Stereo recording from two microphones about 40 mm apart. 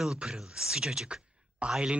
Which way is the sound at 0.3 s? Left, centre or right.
Centre.